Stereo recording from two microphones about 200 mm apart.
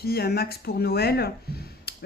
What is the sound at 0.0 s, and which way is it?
Speech, 50° left (ahead or behind).